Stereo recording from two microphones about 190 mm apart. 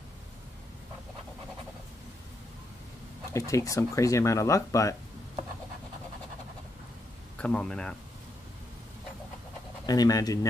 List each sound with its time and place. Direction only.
3.3 s speech: 15° left (ahead or behind)
7.3 s speech: 5° left (ahead or behind)
9.8 s speech: 20° left (ahead or behind)